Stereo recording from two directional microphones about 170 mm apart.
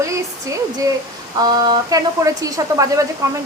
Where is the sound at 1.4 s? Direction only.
20° right (ahead or behind).